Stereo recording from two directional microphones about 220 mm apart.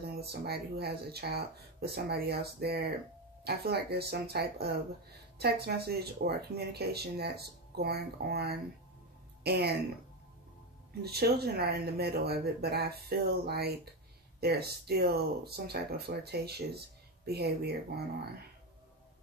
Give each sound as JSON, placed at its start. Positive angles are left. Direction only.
{"t": 0.1, "sound": "speech", "side_deg": -45}
{"t": 11.0, "sound": "speech", "side_deg": -45}